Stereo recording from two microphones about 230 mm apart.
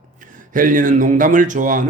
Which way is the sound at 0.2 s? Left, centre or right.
Right.